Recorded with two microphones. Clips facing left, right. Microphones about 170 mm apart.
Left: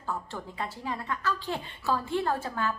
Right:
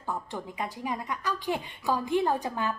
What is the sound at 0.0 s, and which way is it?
A woman's voice, 15° right (ahead or behind).